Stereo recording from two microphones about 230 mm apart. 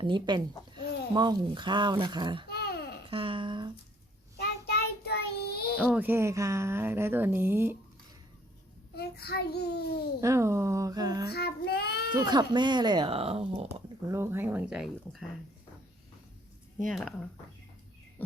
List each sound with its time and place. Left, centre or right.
0.0 s speech: centre
2.5 s a sound: left
3.1 s speech: right
4.4 s child singing: left
5.8 s speech: centre
9.0 s a child's voice: left
10.2 s speech: centre
11.3 s a child's voice: left
12.1 s speech: centre
14.1 s speech: centre
16.9 s speech: centre